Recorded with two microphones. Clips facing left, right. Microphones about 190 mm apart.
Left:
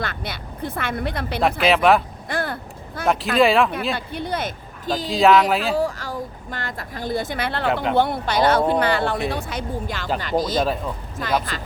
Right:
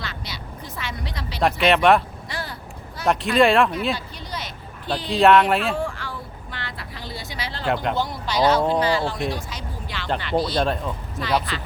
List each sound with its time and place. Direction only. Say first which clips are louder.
0.0 s speech: left 5 dB; 55° left (ahead or behind)
1.4 s speech: even; centre (ahead or behind)
2.2 s a sound: left 7 dB; 55° left (ahead or behind)
3.1 s speech: even; centre (ahead or behind)
3.9 s speech: left 7 dB; 55° left (ahead or behind)
5.1 s speech: even; centre (ahead or behind)
5.7 s vehicle: left 5 dB; 40° left (ahead or behind); by 7.7 s 60° left (ahead or behind)
7.9 s speech: left 4 dB; 60° left (ahead or behind); by 10.6 s 45° left (ahead or behind)
10.6 s speech: left 1 dB; 5° left (ahead or behind)
11.2 s speech: even; 50° left (ahead or behind)